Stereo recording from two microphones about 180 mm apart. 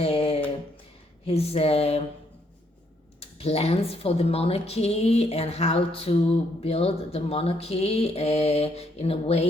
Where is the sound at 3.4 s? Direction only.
35° left (ahead or behind).